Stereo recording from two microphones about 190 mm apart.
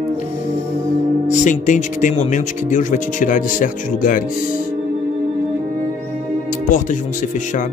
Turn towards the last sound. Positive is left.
turn(degrees=45)  # may be behind; listen again after turning